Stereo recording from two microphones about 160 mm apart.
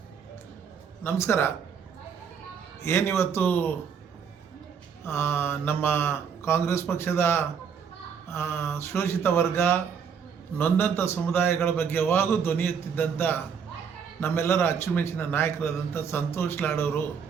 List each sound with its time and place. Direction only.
1.0 s a man's voice: 15° left (ahead or behind)
2.8 s a man's voice: 15° left (ahead or behind)
5.0 s a man's voice: 15° left (ahead or behind)